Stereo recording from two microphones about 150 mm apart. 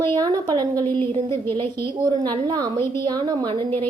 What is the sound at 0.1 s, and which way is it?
Speech, 25° right (ahead or behind).